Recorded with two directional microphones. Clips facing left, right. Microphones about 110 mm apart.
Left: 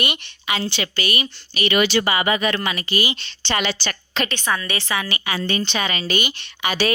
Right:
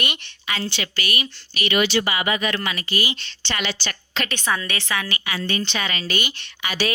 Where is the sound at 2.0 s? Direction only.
35° left (ahead or behind); by 3.5 s 20° left (ahead or behind).